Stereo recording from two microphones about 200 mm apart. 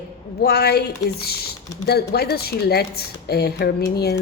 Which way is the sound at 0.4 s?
55° left (ahead or behind).